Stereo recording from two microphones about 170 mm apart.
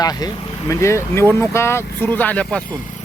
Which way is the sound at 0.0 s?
20° left (ahead or behind).